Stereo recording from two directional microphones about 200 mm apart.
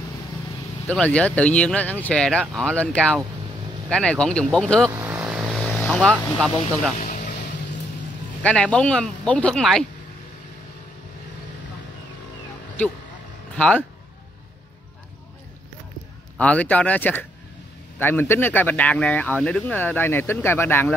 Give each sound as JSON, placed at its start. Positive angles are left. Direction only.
{"t": 0.8, "sound": "speech", "side_deg": 5}
{"t": 4.9, "sound": "vehicle", "side_deg": -10}
{"t": 7.0, "sound": "music", "side_deg": 40}
{"t": 8.4, "sound": "speech", "side_deg": 5}
{"t": 13.6, "sound": "speech", "side_deg": 5}
{"t": 16.3, "sound": "speech", "side_deg": 5}